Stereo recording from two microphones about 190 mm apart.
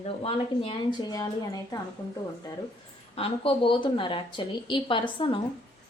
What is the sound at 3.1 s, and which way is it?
A woman's voice, 30° left (ahead or behind).